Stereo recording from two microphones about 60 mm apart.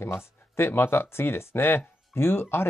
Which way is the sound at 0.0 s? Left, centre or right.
Left.